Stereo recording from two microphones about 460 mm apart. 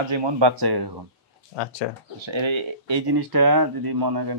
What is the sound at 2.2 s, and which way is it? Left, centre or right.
Speech, right.